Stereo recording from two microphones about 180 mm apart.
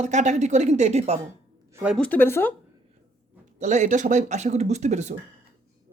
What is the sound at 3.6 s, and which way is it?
Speech, 40° right (ahead or behind).